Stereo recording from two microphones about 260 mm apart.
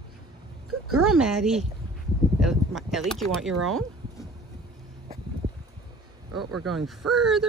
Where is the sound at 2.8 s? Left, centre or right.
Centre.